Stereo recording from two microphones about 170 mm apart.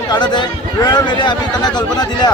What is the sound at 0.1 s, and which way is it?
A man's voice, 25° left (ahead or behind).